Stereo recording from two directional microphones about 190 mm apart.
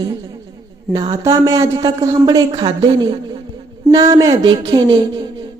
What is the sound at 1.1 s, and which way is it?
A woman's voice, 15° right (ahead or behind).